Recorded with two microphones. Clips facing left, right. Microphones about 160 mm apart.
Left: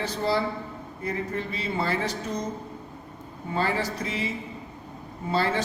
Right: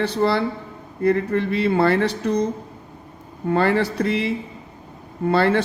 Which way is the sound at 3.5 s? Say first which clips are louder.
Right 8 dB; 65° right (ahead or behind).